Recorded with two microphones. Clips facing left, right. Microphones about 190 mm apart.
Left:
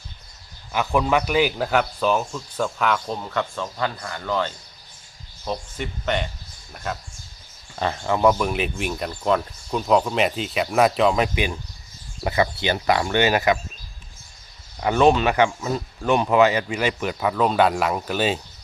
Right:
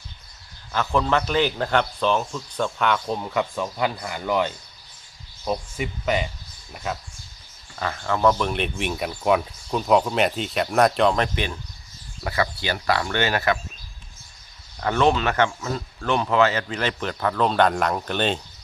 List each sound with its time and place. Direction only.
0.7 s speech: 15° left (ahead or behind); by 7.0 s centre (ahead or behind)
7.8 s speech: 25° left (ahead or behind); by 11.5 s 10° left (ahead or behind)
12.2 s speech: 20° left (ahead or behind)
14.8 s speech: 15° left (ahead or behind)